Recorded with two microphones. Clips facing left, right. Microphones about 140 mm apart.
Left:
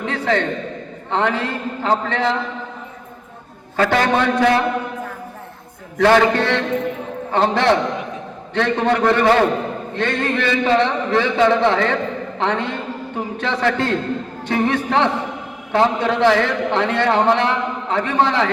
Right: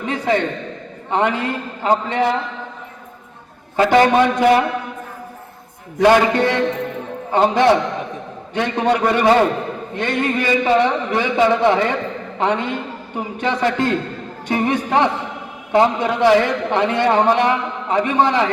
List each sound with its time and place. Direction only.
0.0 s a sound: 15° right (ahead or behind)
1.1 s a man's voice: 15° right (ahead or behind)
3.8 s a man's voice: 15° right (ahead or behind)
6.0 s a man's voice: 15° right (ahead or behind)